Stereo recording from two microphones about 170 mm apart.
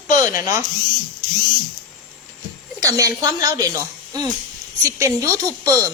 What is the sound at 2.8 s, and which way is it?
Speech, 20° right (ahead or behind).